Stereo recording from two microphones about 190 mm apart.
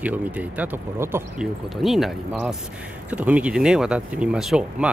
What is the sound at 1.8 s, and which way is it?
Speech, centre (ahead or behind).